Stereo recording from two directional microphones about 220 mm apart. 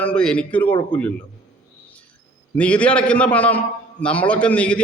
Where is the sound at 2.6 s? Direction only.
5° left (ahead or behind).